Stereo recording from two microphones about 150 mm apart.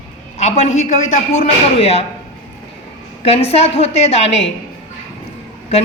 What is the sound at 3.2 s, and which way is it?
A woman's voice, 40° left (ahead or behind).